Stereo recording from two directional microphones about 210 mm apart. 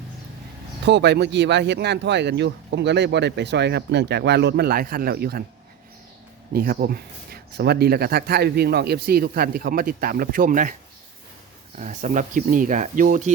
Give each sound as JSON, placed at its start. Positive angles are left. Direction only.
{"t": 0.9, "sound": "speech", "side_deg": -55}
{"t": 6.5, "sound": "speech", "side_deg": -45}
{"t": 11.8, "sound": "speech", "side_deg": -35}